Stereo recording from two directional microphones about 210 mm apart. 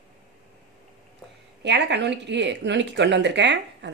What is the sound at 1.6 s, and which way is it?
Speech, 55° right (ahead or behind).